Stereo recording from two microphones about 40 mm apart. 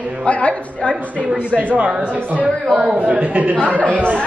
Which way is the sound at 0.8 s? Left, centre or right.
Centre.